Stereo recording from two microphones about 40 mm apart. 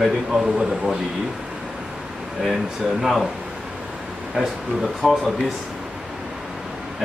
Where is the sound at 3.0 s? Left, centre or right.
Centre.